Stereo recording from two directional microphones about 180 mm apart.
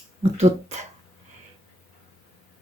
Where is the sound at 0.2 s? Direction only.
35° right (ahead or behind).